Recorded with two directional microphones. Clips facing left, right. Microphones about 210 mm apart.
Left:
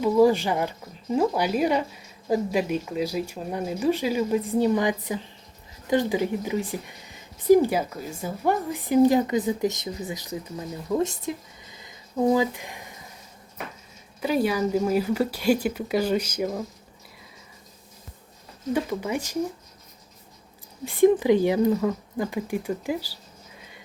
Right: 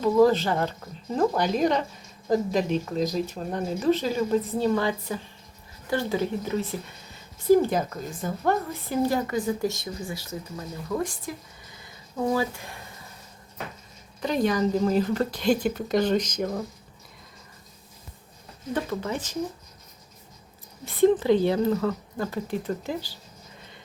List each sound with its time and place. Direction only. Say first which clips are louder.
0.0 s speech: even; 10° left (ahead or behind)
14.2 s speech: left 1 dB; 5° left (ahead or behind)
18.7 s speech: left 3 dB; 10° left (ahead or behind)
20.8 s speech: left 2 dB; 15° left (ahead or behind)